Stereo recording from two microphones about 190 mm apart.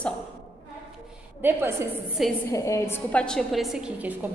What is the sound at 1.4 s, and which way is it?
Speech, 10° right (ahead or behind).